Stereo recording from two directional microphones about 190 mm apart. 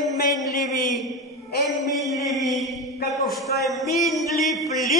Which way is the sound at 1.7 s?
Centre (ahead or behind).